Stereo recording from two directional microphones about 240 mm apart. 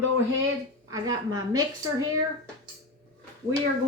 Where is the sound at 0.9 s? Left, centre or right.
Centre.